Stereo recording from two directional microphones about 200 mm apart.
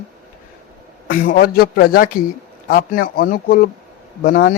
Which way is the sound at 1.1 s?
40° left (ahead or behind).